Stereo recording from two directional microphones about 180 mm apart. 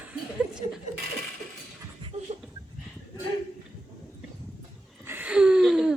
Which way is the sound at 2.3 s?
35° right (ahead or behind).